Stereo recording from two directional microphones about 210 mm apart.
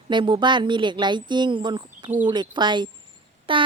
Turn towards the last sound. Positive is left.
turn(degrees=-25)  # may be behind; listen again after turning